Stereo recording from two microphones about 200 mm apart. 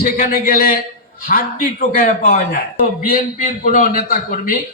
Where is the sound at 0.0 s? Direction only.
45° left (ahead or behind).